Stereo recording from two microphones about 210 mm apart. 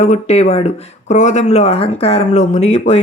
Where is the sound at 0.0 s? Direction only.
30° left (ahead or behind).